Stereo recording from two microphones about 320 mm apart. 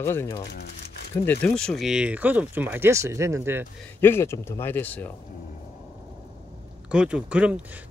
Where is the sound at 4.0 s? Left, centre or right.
Centre.